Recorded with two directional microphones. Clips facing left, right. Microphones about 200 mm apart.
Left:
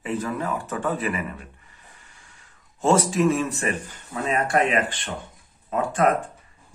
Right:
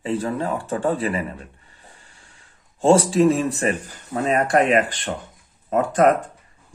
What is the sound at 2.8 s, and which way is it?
Speech, 30° right (ahead or behind).